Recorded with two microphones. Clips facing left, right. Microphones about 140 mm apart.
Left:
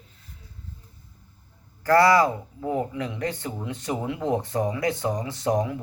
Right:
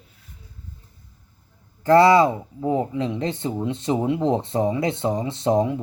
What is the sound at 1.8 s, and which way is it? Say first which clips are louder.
Speech: right 4 dB; 20° right (ahead or behind).